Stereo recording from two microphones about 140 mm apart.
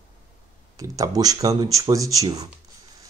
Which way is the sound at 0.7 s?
25° right (ahead or behind).